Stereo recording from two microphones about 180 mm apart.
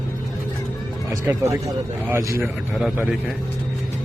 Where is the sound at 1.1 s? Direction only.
15° right (ahead or behind).